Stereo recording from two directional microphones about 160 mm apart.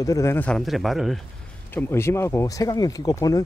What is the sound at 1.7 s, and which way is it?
Speech, 15° left (ahead or behind).